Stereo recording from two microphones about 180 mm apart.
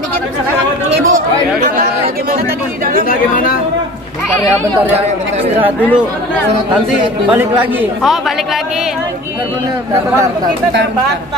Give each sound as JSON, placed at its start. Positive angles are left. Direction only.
{"t": 0.9, "sound": "speech", "side_deg": -80}
{"t": 3.1, "sound": "speech", "side_deg": 50}
{"t": 7.2, "sound": "a man's voice", "side_deg": -10}